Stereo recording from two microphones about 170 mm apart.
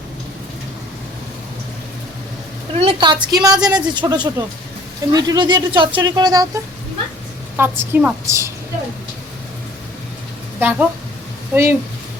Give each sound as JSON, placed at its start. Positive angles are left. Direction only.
{"t": 2.7, "sound": "a woman's voice", "side_deg": -30}
{"t": 10.6, "sound": "a woman's voice", "side_deg": -10}